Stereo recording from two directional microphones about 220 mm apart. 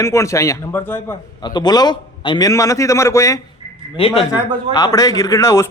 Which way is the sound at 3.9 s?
25° left (ahead or behind).